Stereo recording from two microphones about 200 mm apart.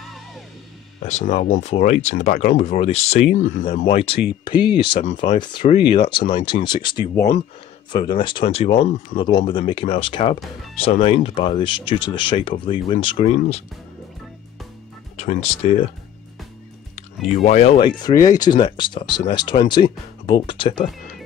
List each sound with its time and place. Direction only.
1.0 s speech: 35° left (ahead or behind)
3.3 s speech: 40° left (ahead or behind)
3.8 s speech: 30° left (ahead or behind)
15.1 s speech: 30° left (ahead or behind)
16.9 s speech: 35° left (ahead or behind)